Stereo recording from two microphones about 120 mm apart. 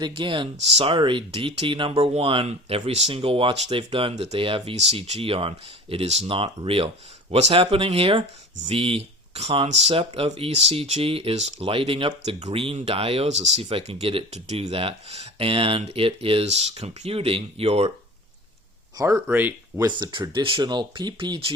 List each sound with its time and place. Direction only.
0.0 s speech: 45° right (ahead or behind); by 13.5 s 70° right (ahead or behind)
13.6 s speech: 50° right (ahead or behind)
18.9 s speech: 25° right (ahead or behind)
19.8 s speech: 40° right (ahead or behind)